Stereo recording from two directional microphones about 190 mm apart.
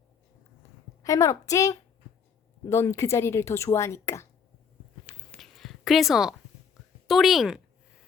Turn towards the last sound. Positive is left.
turn(degrees=0)  # may be behind; listen again after turning